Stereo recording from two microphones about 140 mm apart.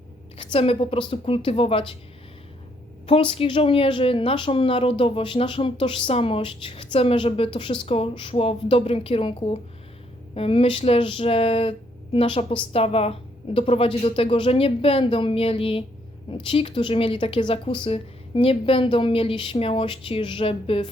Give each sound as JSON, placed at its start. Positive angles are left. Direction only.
{"t": 0.3, "sound": "speech", "side_deg": 45}
{"t": 3.1, "sound": "a woman's voice", "side_deg": 40}